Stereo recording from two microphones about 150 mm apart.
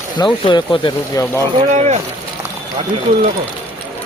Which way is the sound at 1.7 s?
50° right (ahead or behind).